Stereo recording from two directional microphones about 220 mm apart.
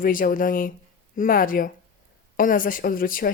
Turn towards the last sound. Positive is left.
turn(degrees=40)  # may be behind; listen again after turning